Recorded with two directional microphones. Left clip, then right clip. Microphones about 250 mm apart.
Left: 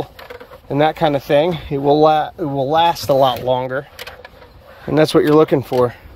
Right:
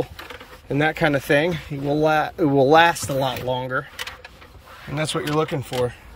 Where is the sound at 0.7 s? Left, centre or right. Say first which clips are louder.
Left 5 dB; centre.